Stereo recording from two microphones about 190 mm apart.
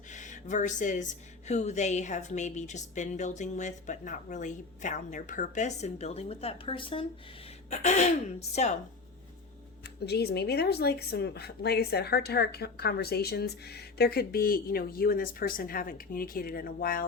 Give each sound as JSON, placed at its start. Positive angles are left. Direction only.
{"t": 0.1, "sound": "a woman's voice", "side_deg": 40}
{"t": 7.7, "sound": "a woman's voice", "side_deg": 35}
{"t": 10.1, "sound": "speech", "side_deg": 60}